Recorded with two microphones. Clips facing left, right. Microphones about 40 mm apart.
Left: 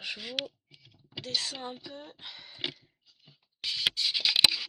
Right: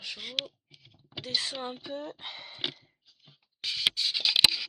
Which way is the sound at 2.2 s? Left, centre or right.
Right.